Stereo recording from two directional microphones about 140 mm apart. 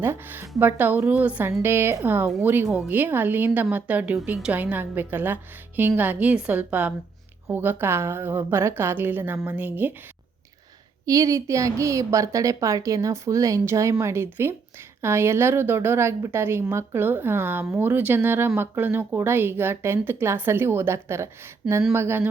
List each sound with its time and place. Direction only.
0.0 s speech: 15° right (ahead or behind)
11.0 s a woman's voice: 25° right (ahead or behind)